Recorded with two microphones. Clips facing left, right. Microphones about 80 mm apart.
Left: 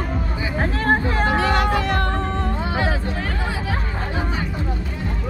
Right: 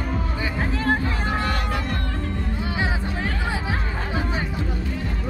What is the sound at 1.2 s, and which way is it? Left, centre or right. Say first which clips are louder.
Music: left 6 dB; left.